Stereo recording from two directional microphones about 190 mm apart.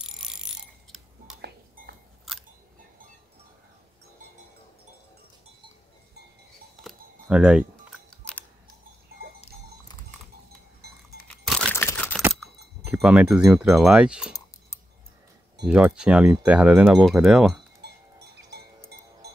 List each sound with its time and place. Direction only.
0.0 s mechanisms: 5° right (ahead or behind)
1.8 s chewing: 45° right (ahead or behind)
6.8 s a sound: 5° right (ahead or behind)
11.2 s a sound: 5° left (ahead or behind)
11.7 s camera: 10° left (ahead or behind)
13.0 s speech: 5° right (ahead or behind)
15.6 s speech: 5° right (ahead or behind)